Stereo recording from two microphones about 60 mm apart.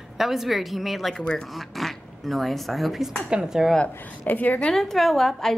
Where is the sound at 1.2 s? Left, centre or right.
Centre.